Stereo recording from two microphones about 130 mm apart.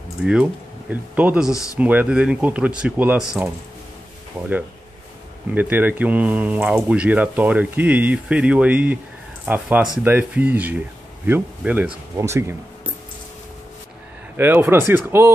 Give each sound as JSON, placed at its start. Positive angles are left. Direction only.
{"t": 0.2, "sound": "speech", "side_deg": -10}
{"t": 5.5, "sound": "speech", "side_deg": -15}
{"t": 14.3, "sound": "speech", "side_deg": -15}